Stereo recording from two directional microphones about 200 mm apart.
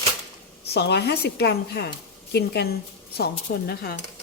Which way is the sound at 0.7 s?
55° left (ahead or behind).